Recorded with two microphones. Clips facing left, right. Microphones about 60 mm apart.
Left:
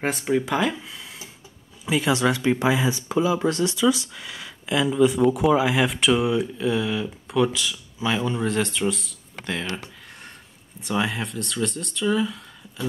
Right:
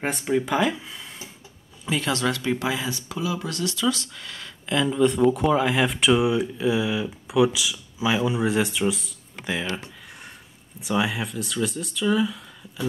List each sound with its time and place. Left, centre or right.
0.0 s speech: centre
1.9 s speech: centre; by 3.7 s left
3.7 s speech: centre
10.8 s speech: centre